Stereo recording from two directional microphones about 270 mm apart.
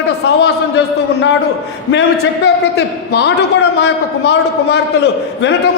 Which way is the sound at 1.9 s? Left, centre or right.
Left.